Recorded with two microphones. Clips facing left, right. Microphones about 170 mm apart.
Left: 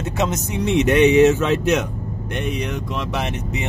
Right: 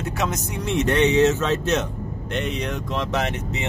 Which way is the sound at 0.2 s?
20° left (ahead or behind).